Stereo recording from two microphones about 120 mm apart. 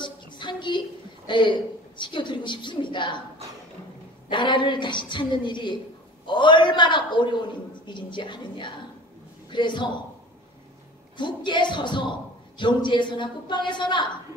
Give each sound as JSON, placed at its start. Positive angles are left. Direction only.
{"t": 0.0, "sound": "a sound", "side_deg": 40}
{"t": 2.0, "sound": "a woman's voice", "side_deg": 40}
{"t": 4.3, "sound": "a woman's voice", "side_deg": 40}
{"t": 11.1, "sound": "a woman's voice", "side_deg": 40}